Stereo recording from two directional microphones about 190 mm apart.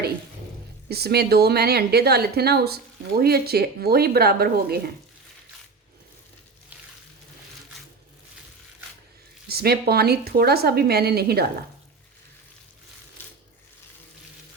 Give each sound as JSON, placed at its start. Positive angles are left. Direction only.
{"t": 0.9, "sound": "speech", "side_deg": -55}
{"t": 9.5, "sound": "speech", "side_deg": -55}
{"t": 13.2, "sound": "a sound", "side_deg": 10}